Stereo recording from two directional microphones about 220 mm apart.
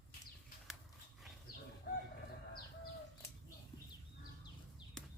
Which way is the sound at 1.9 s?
40° left (ahead or behind).